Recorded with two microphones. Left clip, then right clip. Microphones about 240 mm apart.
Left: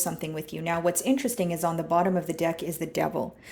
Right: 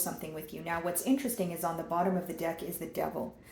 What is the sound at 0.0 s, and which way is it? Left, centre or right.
Speech, left.